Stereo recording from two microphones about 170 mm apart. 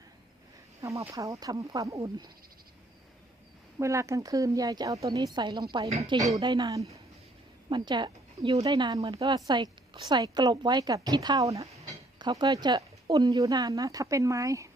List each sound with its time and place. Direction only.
0.8 s speech: 20° right (ahead or behind)
3.8 s speech: 15° right (ahead or behind)
5.9 s speech: 40° right (ahead or behind)
6.1 s speech: 20° right (ahead or behind)